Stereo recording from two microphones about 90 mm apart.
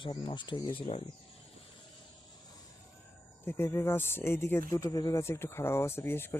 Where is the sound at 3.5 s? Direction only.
30° left (ahead or behind).